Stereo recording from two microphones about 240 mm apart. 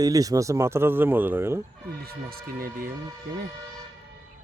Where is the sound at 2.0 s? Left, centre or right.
Right.